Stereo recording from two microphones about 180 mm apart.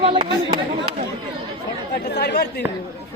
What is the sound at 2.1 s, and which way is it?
Speech, 65° left (ahead or behind).